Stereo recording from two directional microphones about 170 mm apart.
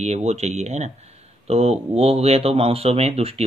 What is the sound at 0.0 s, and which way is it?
Speech, 40° right (ahead or behind).